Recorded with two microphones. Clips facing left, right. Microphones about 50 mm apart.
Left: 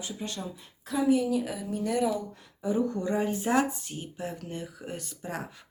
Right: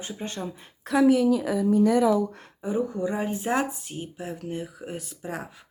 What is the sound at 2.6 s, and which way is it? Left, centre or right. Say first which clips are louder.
Speech: right 1 dB; centre.